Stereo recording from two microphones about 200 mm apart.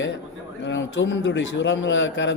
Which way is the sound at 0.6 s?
65° left (ahead or behind).